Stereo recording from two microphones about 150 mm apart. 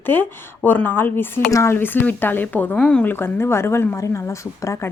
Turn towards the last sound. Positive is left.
turn(degrees=20)  # may be behind; listen again after turning